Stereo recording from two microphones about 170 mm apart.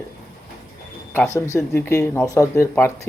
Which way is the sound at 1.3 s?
15° left (ahead or behind).